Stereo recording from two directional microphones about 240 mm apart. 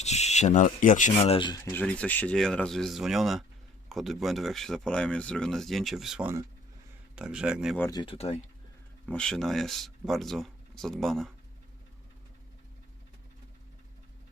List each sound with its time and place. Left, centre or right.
0.0 s speech: left; by 7.8 s centre
7.8 s speech: centre
9.0 s speech: centre